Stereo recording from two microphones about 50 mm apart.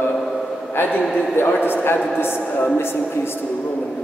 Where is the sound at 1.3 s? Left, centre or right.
Left.